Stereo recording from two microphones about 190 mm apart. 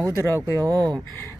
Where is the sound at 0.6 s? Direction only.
20° right (ahead or behind).